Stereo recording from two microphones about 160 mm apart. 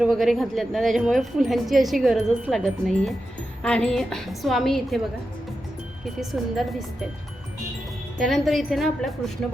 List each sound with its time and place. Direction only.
0.0 s speech: centre (ahead or behind)
6.1 s speech: centre (ahead or behind)
8.2 s speech: centre (ahead or behind)